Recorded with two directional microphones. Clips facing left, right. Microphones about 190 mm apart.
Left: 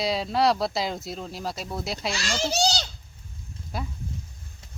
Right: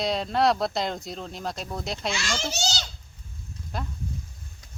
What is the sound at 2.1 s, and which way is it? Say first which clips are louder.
Speech: left 3 dB; 35° left (ahead or behind).